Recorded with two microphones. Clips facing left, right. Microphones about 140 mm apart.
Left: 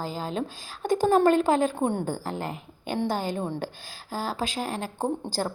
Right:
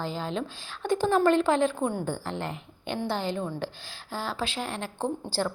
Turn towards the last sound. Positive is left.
turn(degrees=45)  # may be behind; listen again after turning